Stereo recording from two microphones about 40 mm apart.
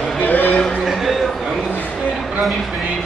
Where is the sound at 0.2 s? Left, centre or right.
Left.